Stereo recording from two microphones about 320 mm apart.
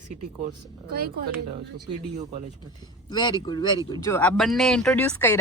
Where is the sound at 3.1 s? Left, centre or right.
Centre.